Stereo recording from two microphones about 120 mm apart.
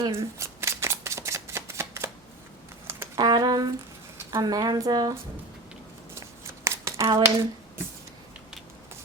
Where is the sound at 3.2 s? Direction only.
35° right (ahead or behind).